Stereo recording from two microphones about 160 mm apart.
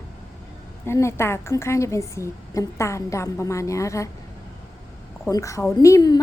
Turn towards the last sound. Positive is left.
turn(degrees=25)  # may be behind; listen again after turning